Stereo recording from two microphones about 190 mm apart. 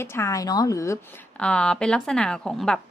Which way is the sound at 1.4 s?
5° left (ahead or behind).